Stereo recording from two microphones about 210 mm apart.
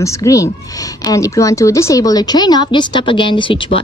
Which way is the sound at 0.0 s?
15° left (ahead or behind).